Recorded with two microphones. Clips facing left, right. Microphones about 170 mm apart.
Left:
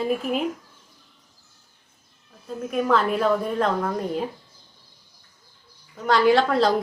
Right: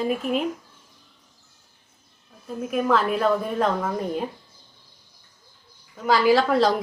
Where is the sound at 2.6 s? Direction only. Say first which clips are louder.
Even; centre (ahead or behind).